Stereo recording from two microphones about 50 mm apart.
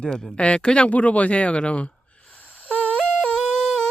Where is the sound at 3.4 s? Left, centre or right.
Centre.